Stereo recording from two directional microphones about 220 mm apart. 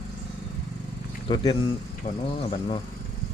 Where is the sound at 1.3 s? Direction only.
20° left (ahead or behind).